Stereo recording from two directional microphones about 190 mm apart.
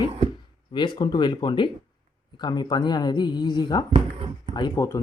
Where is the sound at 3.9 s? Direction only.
35° right (ahead or behind).